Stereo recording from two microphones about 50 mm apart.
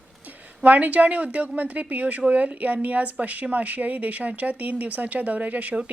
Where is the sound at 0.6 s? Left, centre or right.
Right.